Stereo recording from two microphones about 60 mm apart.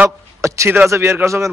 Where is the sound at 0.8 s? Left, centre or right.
Right.